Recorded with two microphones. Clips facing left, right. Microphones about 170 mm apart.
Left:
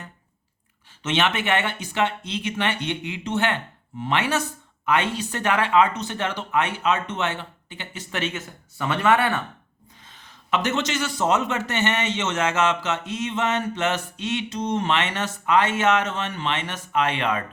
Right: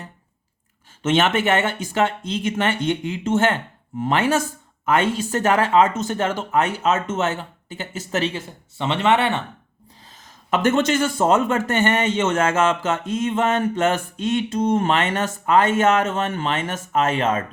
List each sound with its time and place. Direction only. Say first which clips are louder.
1.0 s a man's voice: right 5 dB; 45° right (ahead or behind); by 9.4 s 25° right (ahead or behind)
10.0 s a man's voice: right 2 dB; 40° right (ahead or behind)